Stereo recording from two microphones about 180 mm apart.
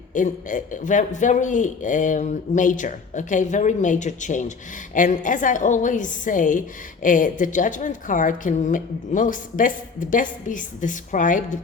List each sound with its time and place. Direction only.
0.1 s a woman's voice: 45° left (ahead or behind)